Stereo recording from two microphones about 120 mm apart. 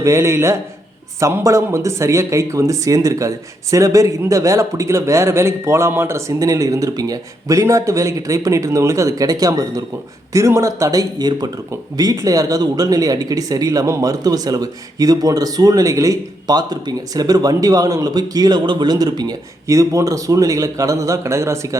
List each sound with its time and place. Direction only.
0.0 s speech: 25° right (ahead or behind)